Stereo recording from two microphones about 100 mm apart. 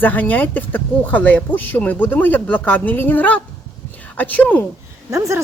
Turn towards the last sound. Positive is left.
turn(degrees=-30)  # may be behind; listen again after turning